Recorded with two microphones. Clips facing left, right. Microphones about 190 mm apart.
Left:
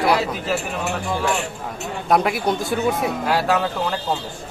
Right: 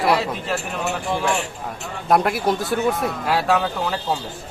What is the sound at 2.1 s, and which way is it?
A man's voice, centre (ahead or behind).